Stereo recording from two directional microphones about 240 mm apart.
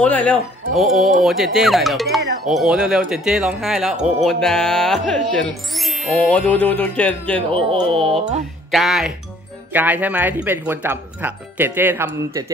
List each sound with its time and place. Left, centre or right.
0.0 s speech: centre
7.5 s speech: right
8.7 s speech: centre